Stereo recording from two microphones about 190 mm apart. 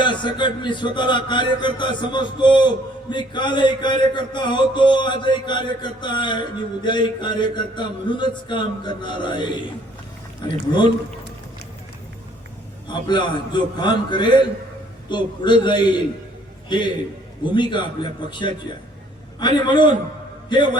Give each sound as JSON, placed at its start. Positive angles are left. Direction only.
{"t": 0.0, "sound": "a man's voice", "side_deg": 25}
{"t": 12.9, "sound": "a man's voice", "side_deg": 25}